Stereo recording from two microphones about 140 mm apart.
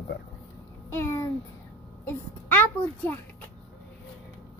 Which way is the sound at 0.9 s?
20° left (ahead or behind).